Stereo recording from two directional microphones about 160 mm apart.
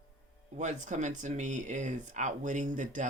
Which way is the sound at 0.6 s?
50° right (ahead or behind).